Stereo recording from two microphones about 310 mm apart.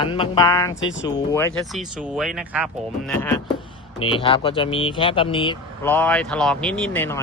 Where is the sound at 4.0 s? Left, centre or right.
Centre.